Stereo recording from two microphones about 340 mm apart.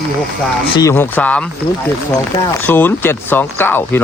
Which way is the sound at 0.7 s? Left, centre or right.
Centre.